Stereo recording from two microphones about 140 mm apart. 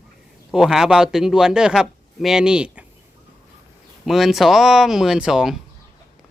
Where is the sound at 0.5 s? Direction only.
5° right (ahead or behind).